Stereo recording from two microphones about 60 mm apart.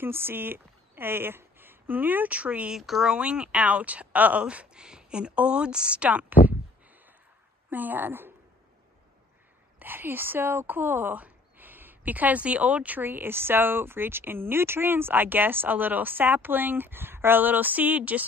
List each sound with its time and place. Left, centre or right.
0.0 s speech: right
2.7 s speech: centre; by 6.5 s right
7.7 s a woman's voice: right
9.8 s a woman's voice: right